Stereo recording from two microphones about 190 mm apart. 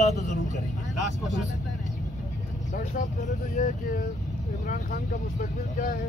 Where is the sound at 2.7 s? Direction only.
45° left (ahead or behind).